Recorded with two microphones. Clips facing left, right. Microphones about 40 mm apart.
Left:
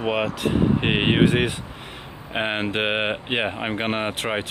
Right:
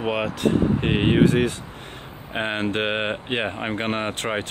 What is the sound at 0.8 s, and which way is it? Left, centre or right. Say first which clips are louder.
Speech: right 2 dB; left.